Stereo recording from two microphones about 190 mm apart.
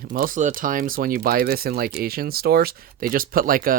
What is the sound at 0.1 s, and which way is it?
Speech, 45° right (ahead or behind).